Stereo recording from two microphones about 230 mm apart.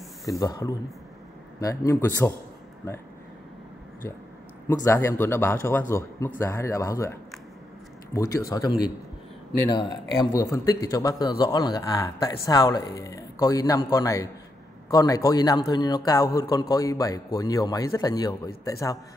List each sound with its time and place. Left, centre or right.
0.3 s speech: centre
4.8 s speech: centre